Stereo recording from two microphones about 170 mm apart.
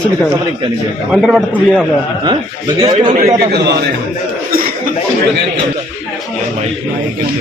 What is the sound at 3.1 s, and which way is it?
Speech, 65° right (ahead or behind).